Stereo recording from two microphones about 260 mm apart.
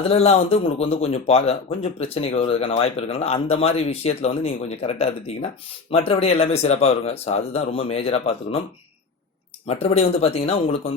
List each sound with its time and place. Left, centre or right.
0.0 s speech: left
9.6 s speech: left